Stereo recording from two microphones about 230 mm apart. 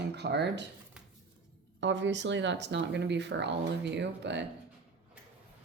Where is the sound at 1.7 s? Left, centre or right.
Right.